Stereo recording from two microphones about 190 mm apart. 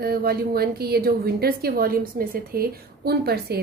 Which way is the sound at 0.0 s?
55° right (ahead or behind).